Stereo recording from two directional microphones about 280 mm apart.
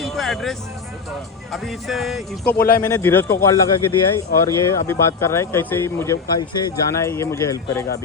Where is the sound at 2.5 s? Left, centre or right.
Left.